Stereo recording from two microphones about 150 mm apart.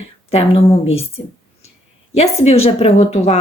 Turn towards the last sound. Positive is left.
turn(degrees=45)  # may be behind; listen again after turning